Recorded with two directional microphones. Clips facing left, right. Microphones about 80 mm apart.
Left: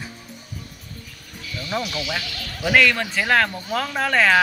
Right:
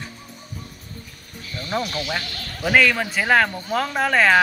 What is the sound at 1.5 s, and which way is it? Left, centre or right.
Music, right.